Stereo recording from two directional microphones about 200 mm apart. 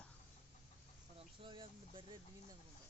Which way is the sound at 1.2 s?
25° right (ahead or behind).